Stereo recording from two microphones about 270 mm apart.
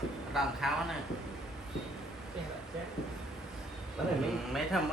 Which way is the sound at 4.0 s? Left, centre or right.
Centre.